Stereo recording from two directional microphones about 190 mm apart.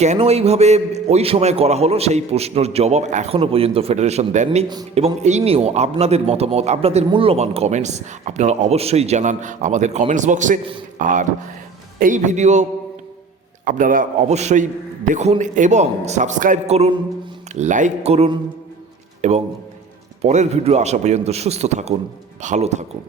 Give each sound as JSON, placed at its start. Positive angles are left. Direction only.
{"t": 0.0, "sound": "a man's voice", "side_deg": -35}
{"t": 13.7, "sound": "a man's voice", "side_deg": -45}